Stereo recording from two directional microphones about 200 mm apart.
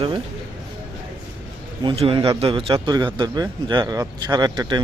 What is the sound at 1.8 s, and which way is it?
A man's voice, 25° right (ahead or behind).